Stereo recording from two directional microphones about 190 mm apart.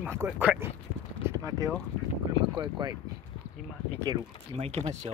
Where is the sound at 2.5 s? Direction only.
25° right (ahead or behind).